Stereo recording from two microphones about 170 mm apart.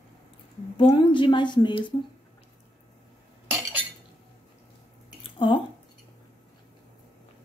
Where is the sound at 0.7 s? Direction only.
30° left (ahead or behind).